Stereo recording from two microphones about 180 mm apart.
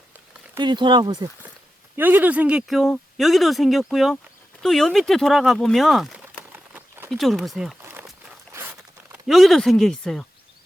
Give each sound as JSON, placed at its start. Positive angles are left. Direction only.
{"t": 0.6, "sound": "speech", "side_deg": -25}
{"t": 2.0, "sound": "speech", "side_deg": -10}
{"t": 6.5, "sound": "a sound", "side_deg": -10}
{"t": 7.1, "sound": "speech", "side_deg": 0}
{"t": 7.8, "sound": "a sound", "side_deg": -10}
{"t": 9.2, "sound": "speech", "side_deg": 0}